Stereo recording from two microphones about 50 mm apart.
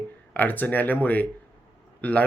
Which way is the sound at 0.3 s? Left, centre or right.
Left.